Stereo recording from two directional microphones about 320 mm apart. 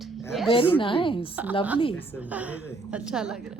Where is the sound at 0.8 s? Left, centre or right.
Centre.